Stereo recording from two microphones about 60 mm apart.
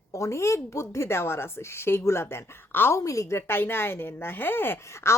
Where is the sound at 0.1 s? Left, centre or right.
Left.